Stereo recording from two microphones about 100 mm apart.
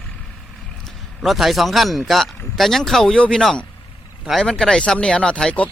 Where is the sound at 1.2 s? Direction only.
Centre (ahead or behind).